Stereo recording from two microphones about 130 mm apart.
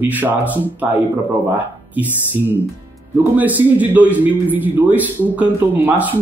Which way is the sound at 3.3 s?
10° right (ahead or behind).